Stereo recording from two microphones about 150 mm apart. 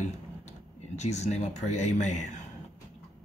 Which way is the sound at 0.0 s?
50° left (ahead or behind).